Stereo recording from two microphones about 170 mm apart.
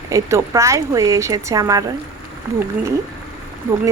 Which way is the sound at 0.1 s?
15° right (ahead or behind).